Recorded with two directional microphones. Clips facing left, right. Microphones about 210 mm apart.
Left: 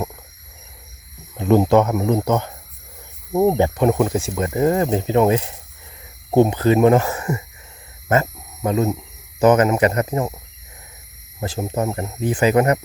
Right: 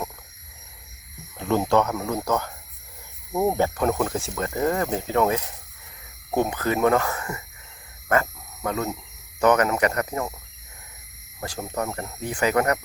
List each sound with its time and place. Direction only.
1.4 s speech: 15° left (ahead or behind)
8.0 s a sound: 25° left (ahead or behind)
9.4 s speech: 25° left (ahead or behind)
11.3 s speech: 25° left (ahead or behind)